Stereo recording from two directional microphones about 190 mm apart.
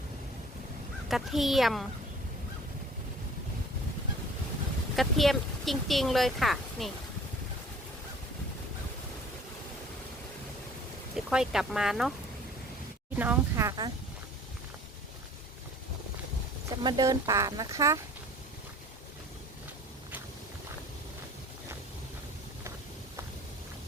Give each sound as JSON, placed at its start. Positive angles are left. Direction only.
{"t": 1.0, "sound": "speech", "side_deg": 0}
{"t": 4.9, "sound": "speech", "side_deg": 0}
{"t": 11.1, "sound": "speech", "side_deg": -5}
{"t": 13.1, "sound": "speech", "side_deg": -10}
{"t": 16.8, "sound": "speech", "side_deg": -20}